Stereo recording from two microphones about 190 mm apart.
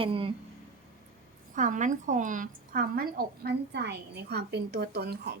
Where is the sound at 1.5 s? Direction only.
40° right (ahead or behind).